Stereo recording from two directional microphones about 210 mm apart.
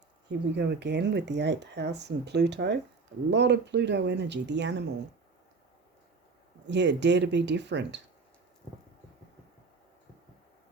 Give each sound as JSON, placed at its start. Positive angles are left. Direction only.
{"t": 0.3, "sound": "speech", "side_deg": -55}
{"t": 6.7, "sound": "speech", "side_deg": -55}